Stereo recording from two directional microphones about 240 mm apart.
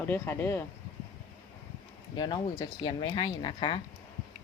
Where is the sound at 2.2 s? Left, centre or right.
Centre.